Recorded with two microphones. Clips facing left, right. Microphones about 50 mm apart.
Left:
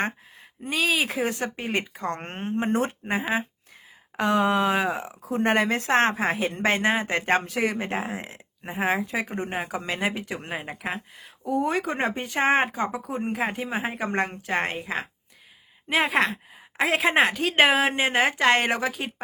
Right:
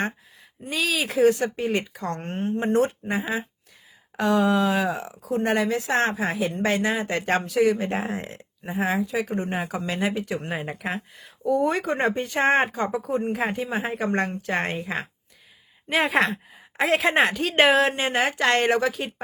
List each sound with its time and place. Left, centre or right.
0.6 s speech: left
8.0 s speech: centre
8.3 s speech: left
9.5 s a woman's voice: centre
9.7 s speech: centre
10.5 s a woman's voice: centre
15.9 s a woman's voice: centre